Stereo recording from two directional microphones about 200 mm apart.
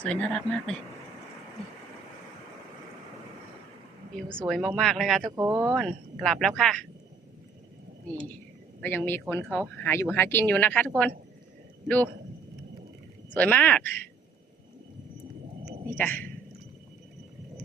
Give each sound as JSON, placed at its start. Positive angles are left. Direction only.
{"t": 0.0, "sound": "a woman's voice", "side_deg": 5}
{"t": 4.3, "sound": "a woman's voice", "side_deg": 5}
{"t": 5.4, "sound": "speech", "side_deg": -15}
{"t": 5.7, "sound": "a woman's voice", "side_deg": 0}
{"t": 8.8, "sound": "speech", "side_deg": 10}
{"t": 13.3, "sound": "speech", "side_deg": 10}
{"t": 15.9, "sound": "speech", "side_deg": 10}